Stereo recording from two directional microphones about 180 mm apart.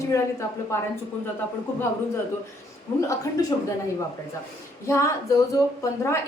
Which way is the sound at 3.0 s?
15° left (ahead or behind).